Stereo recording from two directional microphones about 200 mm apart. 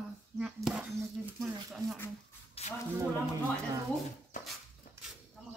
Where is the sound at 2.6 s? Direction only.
30° left (ahead or behind).